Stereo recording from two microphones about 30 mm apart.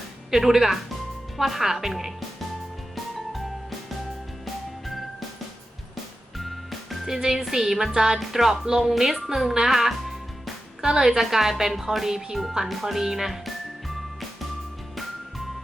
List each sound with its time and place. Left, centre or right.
0.3 s speech: centre
2.9 s music: centre
6.3 s music: centre
7.2 s speech: centre
7.9 s a woman's voice: right
8.2 s speech: centre
9.3 s music: centre
10.8 s a woman's voice: right
11.2 s speech: centre
12.8 s music: centre